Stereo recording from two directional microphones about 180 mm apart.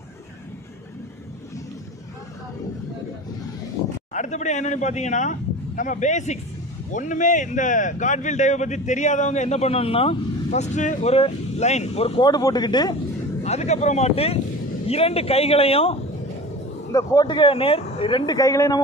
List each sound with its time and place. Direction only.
4.1 s a man's voice: 40° left (ahead or behind)
12.2 s speech: 20° left (ahead or behind)
13.4 s a man's voice: 40° left (ahead or behind)
16.9 s speech: 20° left (ahead or behind)